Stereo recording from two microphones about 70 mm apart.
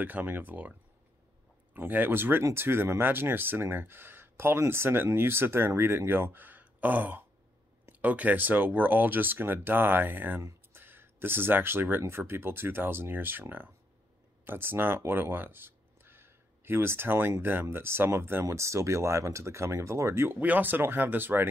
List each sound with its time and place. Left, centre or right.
0.0 s speech: right
10.7 s a sound: right
12.0 s speech: right
20.3 s speech: right